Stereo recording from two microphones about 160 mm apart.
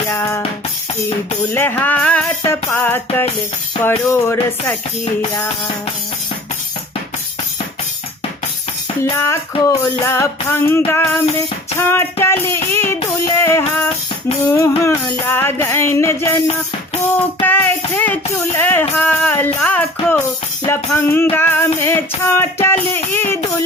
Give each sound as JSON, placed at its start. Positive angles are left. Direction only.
{"t": 0.1, "sound": "drum kit", "side_deg": 15}
{"t": 1.5, "sound": "music", "side_deg": 10}
{"t": 9.0, "sound": "music", "side_deg": 15}
{"t": 15.3, "sound": "music", "side_deg": 15}
{"t": 17.4, "sound": "music", "side_deg": 10}